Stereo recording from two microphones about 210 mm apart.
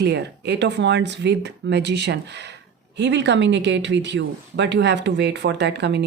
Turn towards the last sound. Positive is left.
turn(degrees=-55)  # may be behind; listen again after turning